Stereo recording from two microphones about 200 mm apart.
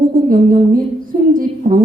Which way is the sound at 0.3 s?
45° right (ahead or behind).